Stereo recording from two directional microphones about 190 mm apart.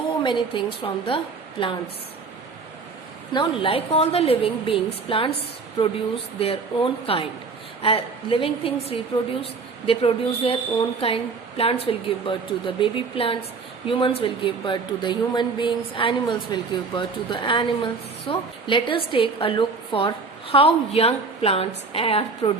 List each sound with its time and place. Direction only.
0.2 s a woman's voice: 25° left (ahead or behind)
3.3 s speech: 25° left (ahead or behind)
6.4 s speech: 30° left (ahead or behind)